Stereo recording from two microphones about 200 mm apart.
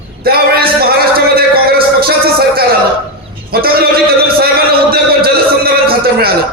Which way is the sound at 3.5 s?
50° right (ahead or behind).